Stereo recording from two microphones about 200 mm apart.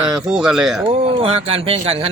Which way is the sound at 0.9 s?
25° right (ahead or behind).